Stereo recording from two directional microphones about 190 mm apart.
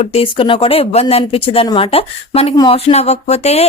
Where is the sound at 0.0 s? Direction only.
30° left (ahead or behind).